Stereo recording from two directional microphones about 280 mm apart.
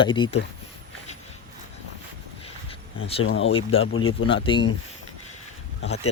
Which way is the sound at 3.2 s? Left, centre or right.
Left.